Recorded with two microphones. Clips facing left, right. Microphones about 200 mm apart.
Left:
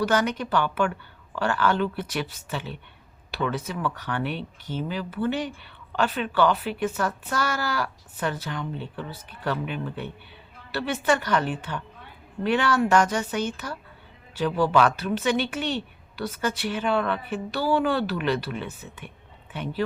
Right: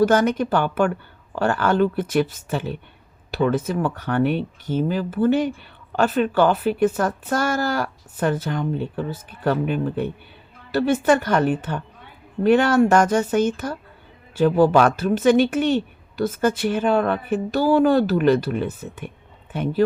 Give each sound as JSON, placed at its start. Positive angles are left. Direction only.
{"t": 0.0, "sound": "speech", "side_deg": -45}